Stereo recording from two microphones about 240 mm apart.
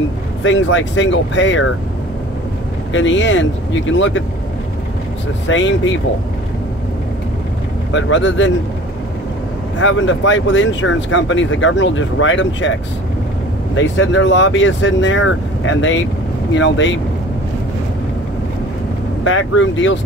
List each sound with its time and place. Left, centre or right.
0.4 s speech: left
2.9 s speech: left
5.5 s speech: left
7.9 s speech: left
9.8 s speech: left
13.7 s speech: left
19.2 s speech: left